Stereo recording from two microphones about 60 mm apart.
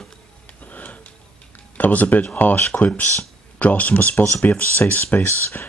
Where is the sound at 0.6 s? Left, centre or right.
Left.